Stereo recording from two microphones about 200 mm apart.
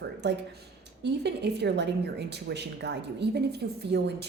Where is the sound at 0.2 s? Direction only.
60° right (ahead or behind).